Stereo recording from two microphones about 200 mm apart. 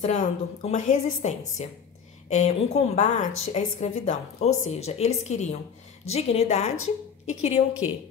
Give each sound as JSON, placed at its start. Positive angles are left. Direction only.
{"t": 0.0, "sound": "a woman's voice", "side_deg": 35}